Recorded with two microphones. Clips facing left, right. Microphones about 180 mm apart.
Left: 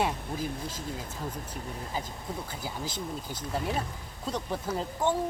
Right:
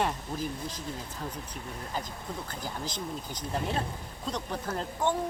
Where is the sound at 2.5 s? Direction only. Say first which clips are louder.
Even; 10° left (ahead or behind).